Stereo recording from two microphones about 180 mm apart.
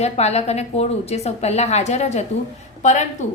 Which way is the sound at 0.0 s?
35° left (ahead or behind).